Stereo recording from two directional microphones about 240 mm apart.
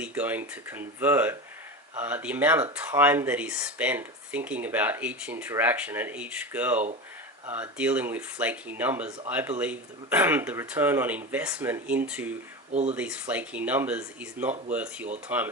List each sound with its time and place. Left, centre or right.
0.0 s speech: centre
12.7 s speech: right
13.0 s speech: centre